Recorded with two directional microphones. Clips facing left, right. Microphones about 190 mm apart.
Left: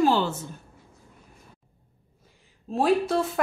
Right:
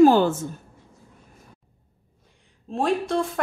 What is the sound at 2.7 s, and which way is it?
Speech, 5° left (ahead or behind).